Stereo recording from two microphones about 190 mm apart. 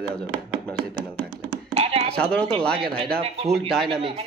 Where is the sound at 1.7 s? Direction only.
30° right (ahead or behind).